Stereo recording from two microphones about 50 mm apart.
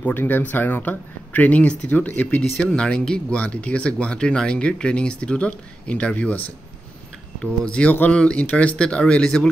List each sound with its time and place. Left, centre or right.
0.2 s speech: left; by 9.5 s centre